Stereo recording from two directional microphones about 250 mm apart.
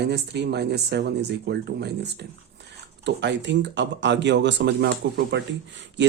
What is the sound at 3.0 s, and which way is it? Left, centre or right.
Speech, right.